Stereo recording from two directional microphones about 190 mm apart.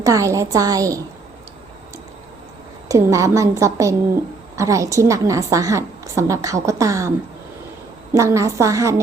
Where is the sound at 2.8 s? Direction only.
15° right (ahead or behind).